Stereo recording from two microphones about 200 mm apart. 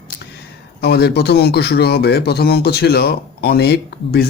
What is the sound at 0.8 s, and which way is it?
A man's voice, 55° left (ahead or behind).